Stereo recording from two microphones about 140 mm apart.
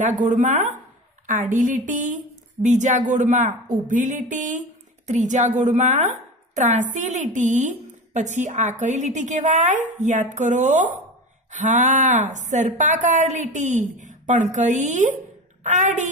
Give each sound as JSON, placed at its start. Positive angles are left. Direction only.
{"t": 0.0, "sound": "a woman's voice", "side_deg": -60}